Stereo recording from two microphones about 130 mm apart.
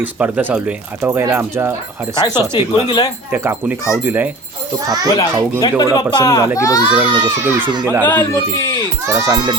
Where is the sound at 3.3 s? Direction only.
15° right (ahead or behind).